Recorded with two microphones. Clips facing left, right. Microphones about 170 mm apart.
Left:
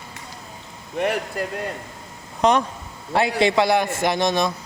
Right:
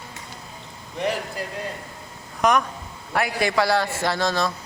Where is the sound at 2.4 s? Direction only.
30° left (ahead or behind).